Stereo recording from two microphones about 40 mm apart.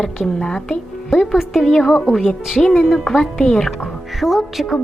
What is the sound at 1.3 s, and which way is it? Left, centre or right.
A woman's voice, centre.